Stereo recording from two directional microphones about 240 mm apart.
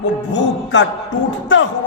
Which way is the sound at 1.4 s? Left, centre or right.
Left.